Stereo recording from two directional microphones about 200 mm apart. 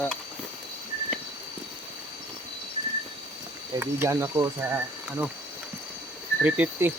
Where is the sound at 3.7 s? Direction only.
10° right (ahead or behind).